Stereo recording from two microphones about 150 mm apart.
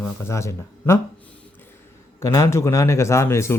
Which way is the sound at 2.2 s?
20° left (ahead or behind).